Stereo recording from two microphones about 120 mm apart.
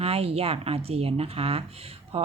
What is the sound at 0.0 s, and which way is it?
Speech, 55° right (ahead or behind).